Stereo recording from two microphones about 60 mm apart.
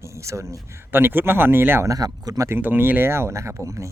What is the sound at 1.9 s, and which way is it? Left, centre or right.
Speech, right.